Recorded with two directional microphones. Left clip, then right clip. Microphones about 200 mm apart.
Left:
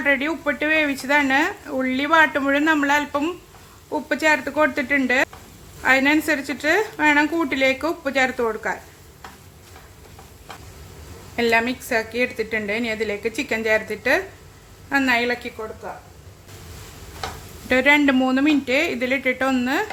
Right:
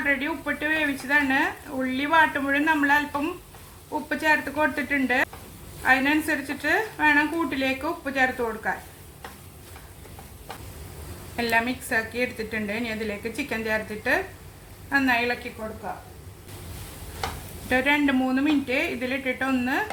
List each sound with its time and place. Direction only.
0.0 s a woman's voice: 40° left (ahead or behind)
11.3 s a woman's voice: 35° left (ahead or behind)
17.7 s a woman's voice: 35° left (ahead or behind)